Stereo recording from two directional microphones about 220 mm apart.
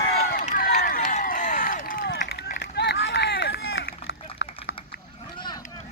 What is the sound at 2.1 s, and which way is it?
Run, 45° left (ahead or behind).